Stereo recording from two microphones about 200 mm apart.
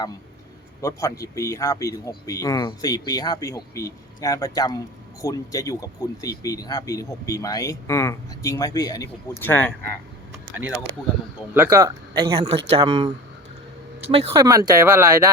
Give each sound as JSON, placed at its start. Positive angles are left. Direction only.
{"t": 0.8, "sound": "speech", "side_deg": 15}
{"t": 11.5, "sound": "speech", "side_deg": -15}
{"t": 14.1, "sound": "speech", "side_deg": -25}